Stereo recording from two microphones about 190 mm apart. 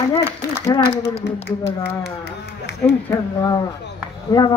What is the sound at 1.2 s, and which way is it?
Speech, 65° left (ahead or behind).